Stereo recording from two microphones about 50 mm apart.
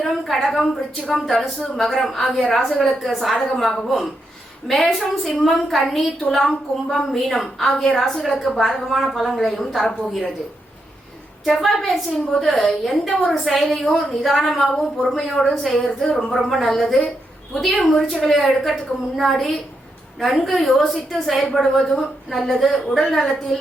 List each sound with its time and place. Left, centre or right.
0.0 s a woman's voice: centre
11.4 s a woman's voice: centre
16.0 s speech: left
16.3 s a woman's voice: centre